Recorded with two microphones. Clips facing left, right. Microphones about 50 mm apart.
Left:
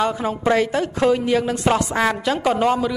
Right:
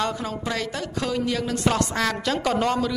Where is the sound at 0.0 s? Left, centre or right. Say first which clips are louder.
Left 6 dB; centre.